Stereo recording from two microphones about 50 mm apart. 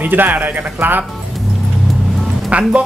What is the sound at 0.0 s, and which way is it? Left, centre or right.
Speech, right.